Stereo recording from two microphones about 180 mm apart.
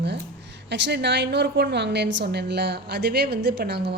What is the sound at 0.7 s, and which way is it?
A woman's voice, 70° right (ahead or behind).